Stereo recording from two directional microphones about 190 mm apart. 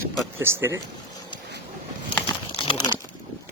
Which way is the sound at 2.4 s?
30° left (ahead or behind).